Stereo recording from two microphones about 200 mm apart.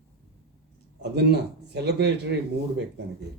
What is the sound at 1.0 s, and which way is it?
Speech, 55° right (ahead or behind).